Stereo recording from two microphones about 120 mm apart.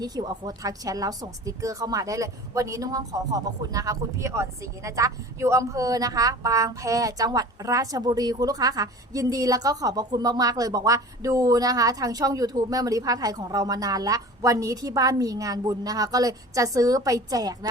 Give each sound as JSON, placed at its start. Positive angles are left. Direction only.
{"t": 0.0, "sound": "a woman's voice", "side_deg": -35}